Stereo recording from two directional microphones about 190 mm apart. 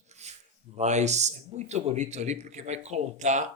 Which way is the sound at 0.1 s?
35° right (ahead or behind).